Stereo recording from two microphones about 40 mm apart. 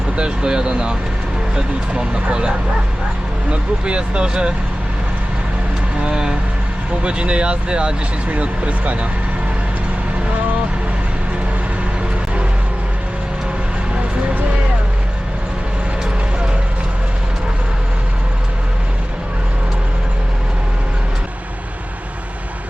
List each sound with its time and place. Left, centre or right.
0.2 s speech: right
3.5 s speech: right
6.0 s speech: right
8.3 s speech: right